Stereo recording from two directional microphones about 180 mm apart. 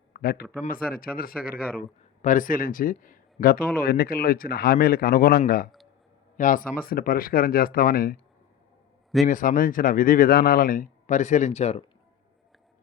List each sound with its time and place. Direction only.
0.1 s a sound: 55° left (ahead or behind)
0.6 s speech: 55° left (ahead or behind)
6.3 s speech: 45° left (ahead or behind)
9.2 s speech: 50° left (ahead or behind)